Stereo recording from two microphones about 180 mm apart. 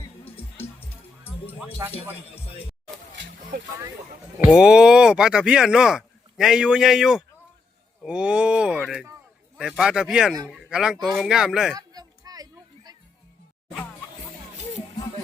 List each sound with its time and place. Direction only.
1.5 s music: 10° right (ahead or behind)
4.4 s speech: 5° right (ahead or behind)
11.7 s a sound: 20° right (ahead or behind)